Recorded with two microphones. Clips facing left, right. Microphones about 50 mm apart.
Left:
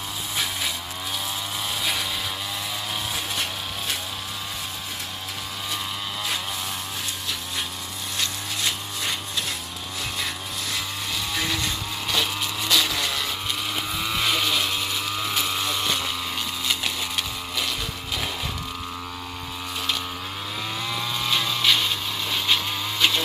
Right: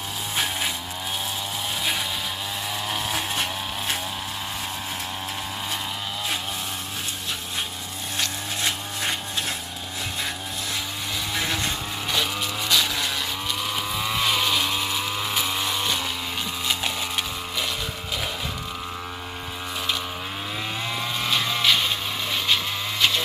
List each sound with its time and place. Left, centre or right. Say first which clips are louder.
11.3 s vehicle: right 1 dB; right
12.1 s vehicle: even; centre
14.0 s chainsaw: right 1 dB; centre
21.2 s a sound: even; centre